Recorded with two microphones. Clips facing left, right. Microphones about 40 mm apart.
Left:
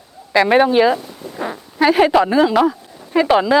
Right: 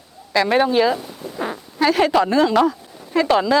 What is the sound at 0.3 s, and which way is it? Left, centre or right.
Speech, centre.